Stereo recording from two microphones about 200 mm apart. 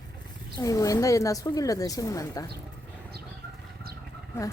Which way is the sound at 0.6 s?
15° left (ahead or behind).